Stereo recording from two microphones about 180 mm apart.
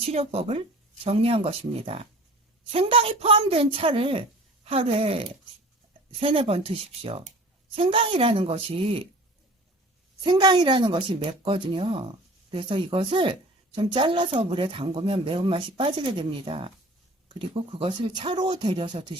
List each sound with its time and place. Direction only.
0.0 s speech: 35° right (ahead or behind)
10.2 s speech: 25° right (ahead or behind)